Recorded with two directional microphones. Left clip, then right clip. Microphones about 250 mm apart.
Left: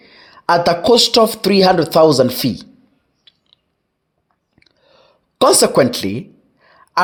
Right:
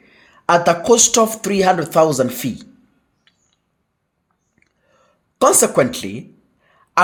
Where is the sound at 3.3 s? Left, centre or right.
Left.